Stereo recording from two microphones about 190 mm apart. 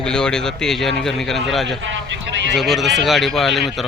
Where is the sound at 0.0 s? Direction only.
5° left (ahead or behind).